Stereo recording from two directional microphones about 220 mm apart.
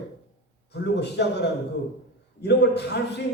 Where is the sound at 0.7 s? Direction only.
50° left (ahead or behind).